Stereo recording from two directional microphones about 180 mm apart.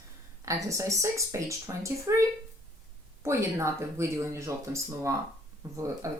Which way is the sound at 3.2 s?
15° right (ahead or behind).